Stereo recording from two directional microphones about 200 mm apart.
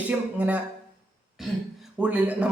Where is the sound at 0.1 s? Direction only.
10° right (ahead or behind).